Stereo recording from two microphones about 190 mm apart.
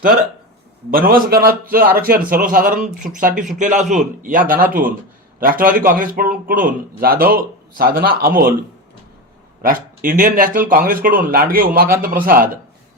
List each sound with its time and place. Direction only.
0.9 s speech: 50° right (ahead or behind)
9.6 s speech: 45° right (ahead or behind)